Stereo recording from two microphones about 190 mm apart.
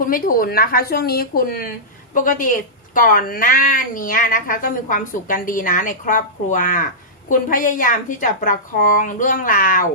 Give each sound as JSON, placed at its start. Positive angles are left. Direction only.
{"t": 0.0, "sound": "a woman's voice", "side_deg": 45}